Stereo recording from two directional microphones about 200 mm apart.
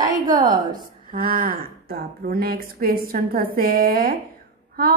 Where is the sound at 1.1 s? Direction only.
45° right (ahead or behind).